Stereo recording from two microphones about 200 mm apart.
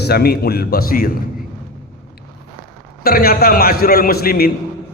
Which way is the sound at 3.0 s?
50° left (ahead or behind).